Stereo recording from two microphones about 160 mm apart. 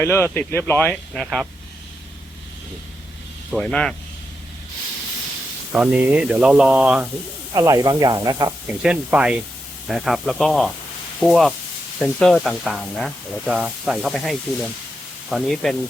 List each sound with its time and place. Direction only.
0.0 s speech: 15° left (ahead or behind)
3.5 s speech: 5° left (ahead or behind)
5.7 s speech: 5° right (ahead or behind)
7.5 s speech: 20° right (ahead or behind)
8.6 s speech: 5° right (ahead or behind)